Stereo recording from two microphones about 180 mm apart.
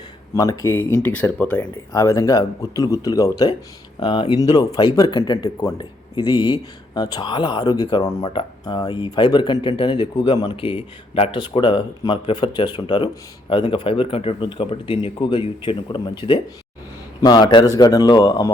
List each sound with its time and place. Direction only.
0.3 s speech: 20° left (ahead or behind)